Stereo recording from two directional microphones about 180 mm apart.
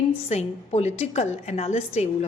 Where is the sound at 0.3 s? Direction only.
40° left (ahead or behind).